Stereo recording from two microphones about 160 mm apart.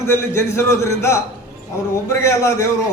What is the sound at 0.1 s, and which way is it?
A man's voice, 15° left (ahead or behind).